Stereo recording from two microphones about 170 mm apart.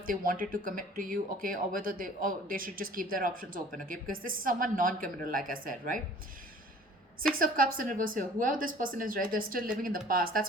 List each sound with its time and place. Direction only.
0.0 s speech: 55° right (ahead or behind)
7.3 s speech: 55° right (ahead or behind)